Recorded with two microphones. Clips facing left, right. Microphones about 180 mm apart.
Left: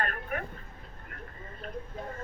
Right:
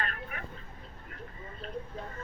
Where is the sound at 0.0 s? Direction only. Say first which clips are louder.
Left 5 dB; 50° left (ahead or behind).